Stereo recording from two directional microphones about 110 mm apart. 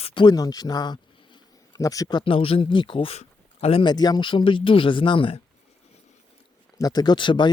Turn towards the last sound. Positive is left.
turn(degrees=45)  # may be behind; listen again after turning